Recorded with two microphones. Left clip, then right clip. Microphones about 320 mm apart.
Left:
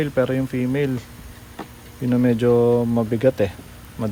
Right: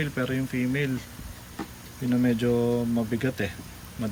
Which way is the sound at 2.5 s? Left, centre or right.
Right.